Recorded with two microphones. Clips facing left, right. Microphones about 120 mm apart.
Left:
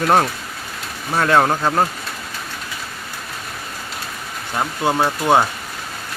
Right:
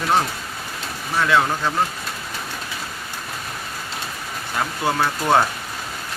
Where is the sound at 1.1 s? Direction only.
50° left (ahead or behind).